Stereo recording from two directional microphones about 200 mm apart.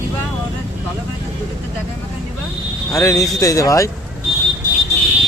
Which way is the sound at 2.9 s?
15° left (ahead or behind).